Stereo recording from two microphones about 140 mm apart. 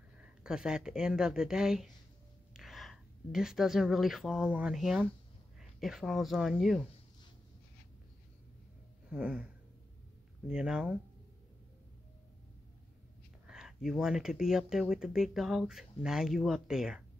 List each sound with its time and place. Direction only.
0.4 s speech: 5° right (ahead or behind)
9.1 s speech: 5° right (ahead or behind)
10.5 s speech: 5° right (ahead or behind)
13.5 s speech: 5° right (ahead or behind)